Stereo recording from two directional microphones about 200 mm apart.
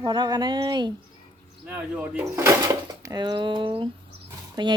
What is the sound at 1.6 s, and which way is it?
Speech, 10° right (ahead or behind).